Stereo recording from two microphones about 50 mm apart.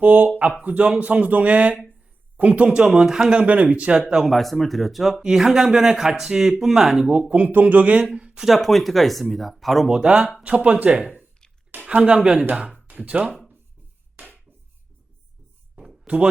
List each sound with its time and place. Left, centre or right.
0.0 s speech: right
2.6 s speech: centre
3.4 s speech: right
4.3 s speech: centre
7.3 s speech: right
8.0 s speech: centre
8.4 s speech: centre
9.9 s speech: centre
16.0 s speech: right